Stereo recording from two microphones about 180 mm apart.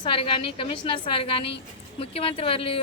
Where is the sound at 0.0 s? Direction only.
30° left (ahead or behind).